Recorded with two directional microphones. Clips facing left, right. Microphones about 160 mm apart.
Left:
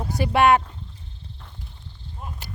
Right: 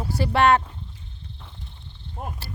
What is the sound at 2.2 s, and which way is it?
Cricket, 70° right (ahead or behind).